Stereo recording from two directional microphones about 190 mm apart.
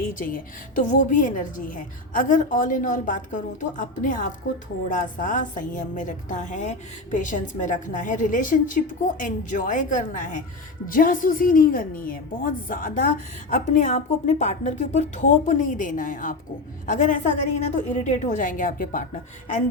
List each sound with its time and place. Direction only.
0.1 s a woman's voice: 45° left (ahead or behind)